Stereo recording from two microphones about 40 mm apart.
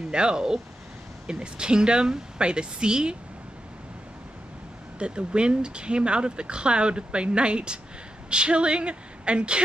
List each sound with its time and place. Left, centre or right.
0.1 s speech: right
4.9 s speech: right